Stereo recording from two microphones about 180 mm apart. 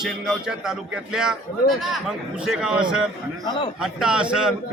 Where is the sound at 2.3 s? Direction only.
5° right (ahead or behind).